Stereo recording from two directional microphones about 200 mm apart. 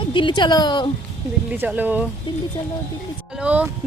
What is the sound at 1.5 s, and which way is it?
Speech, 10° right (ahead or behind).